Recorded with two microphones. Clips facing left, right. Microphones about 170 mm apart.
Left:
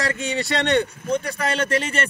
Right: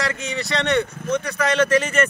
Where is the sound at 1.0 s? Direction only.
30° left (ahead or behind).